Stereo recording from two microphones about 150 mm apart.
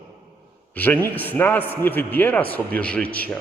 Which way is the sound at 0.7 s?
10° left (ahead or behind).